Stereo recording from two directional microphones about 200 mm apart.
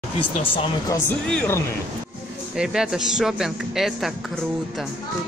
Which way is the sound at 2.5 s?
5° right (ahead or behind).